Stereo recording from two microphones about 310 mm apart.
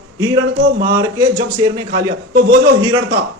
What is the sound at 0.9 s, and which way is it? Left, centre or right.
Speech, centre.